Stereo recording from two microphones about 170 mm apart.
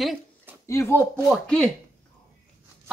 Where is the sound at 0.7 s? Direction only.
15° left (ahead or behind).